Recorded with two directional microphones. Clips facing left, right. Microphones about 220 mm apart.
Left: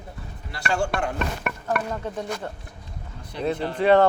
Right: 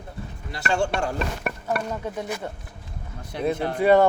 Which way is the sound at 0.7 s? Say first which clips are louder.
Right 1 dB; 25° right (ahead or behind).